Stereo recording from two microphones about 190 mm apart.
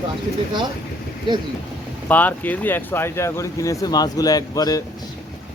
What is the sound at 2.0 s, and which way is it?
Speech, 10° left (ahead or behind).